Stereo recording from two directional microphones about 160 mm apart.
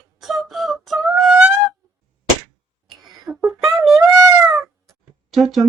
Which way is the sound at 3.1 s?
5° right (ahead or behind).